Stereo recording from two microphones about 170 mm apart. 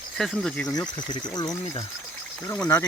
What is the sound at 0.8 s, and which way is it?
Speech, 25° left (ahead or behind).